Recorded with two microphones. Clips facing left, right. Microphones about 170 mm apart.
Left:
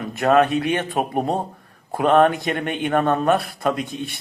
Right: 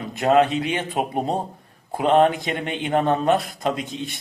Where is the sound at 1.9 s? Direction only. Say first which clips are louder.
Left 1 dB; 20° right (ahead or behind).